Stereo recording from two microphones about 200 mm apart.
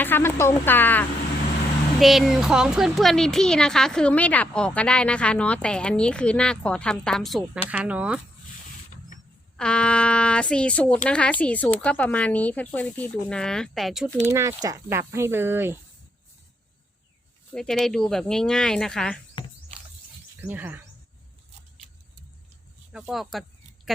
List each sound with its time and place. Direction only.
0.0 s speech: 10° left (ahead or behind); by 8.2 s 5° right (ahead or behind)
9.6 s speech: 5° left (ahead or behind)
14.2 s speech: 15° right (ahead or behind)
17.5 s speech: 5° left (ahead or behind)
20.5 s speech: 10° right (ahead or behind)
22.9 s a sound: 5° right (ahead or behind)